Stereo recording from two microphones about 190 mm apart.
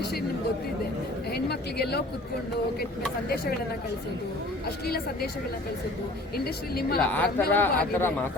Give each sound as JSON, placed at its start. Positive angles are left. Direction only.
{"t": 1.3, "sound": "speech", "side_deg": 55}
{"t": 3.2, "sound": "speech", "side_deg": 55}
{"t": 4.9, "sound": "speech", "side_deg": 55}
{"t": 6.3, "sound": "speech", "side_deg": 55}
{"t": 7.0, "sound": "speech", "side_deg": 10}